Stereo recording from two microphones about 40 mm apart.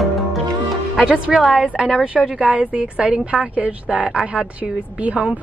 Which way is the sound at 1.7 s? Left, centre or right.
Centre.